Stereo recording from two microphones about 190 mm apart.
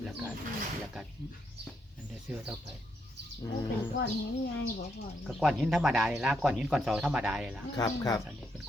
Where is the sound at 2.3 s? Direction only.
5° right (ahead or behind).